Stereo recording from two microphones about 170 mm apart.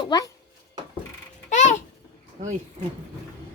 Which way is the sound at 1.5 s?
45° left (ahead or behind).